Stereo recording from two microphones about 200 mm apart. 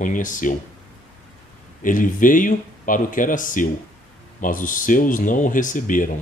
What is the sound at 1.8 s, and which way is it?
Speech, 40° left (ahead or behind).